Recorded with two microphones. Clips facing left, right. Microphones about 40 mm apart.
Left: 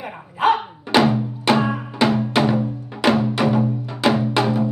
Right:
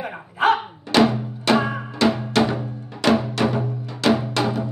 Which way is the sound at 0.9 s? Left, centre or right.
Centre.